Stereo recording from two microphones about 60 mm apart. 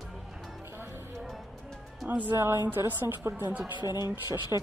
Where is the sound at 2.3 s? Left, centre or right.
Right.